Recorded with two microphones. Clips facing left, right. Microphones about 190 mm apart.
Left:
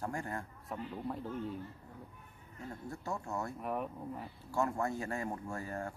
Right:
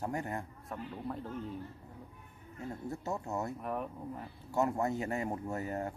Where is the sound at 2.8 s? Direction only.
20° right (ahead or behind).